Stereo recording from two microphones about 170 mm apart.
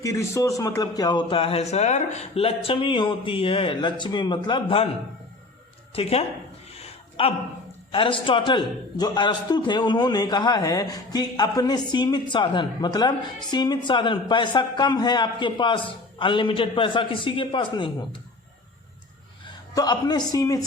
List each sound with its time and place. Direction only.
0.0 s a woman's voice: 20° left (ahead or behind)
5.9 s speech: 35° left (ahead or behind)
6.7 s a sound: 35° left (ahead or behind)
7.9 s a woman's voice: 30° left (ahead or behind)
19.7 s a woman's voice: 25° left (ahead or behind)